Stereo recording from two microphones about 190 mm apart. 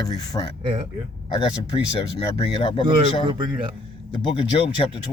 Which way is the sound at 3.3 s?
25° right (ahead or behind).